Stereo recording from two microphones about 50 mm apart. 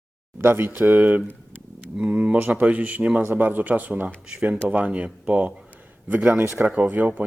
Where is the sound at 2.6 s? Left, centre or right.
Right.